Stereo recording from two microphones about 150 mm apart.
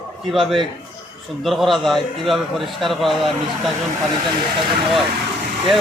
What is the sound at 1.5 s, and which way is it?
A man's voice, centre (ahead or behind).